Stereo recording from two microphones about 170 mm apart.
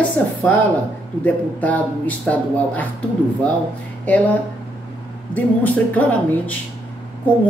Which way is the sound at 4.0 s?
10° left (ahead or behind).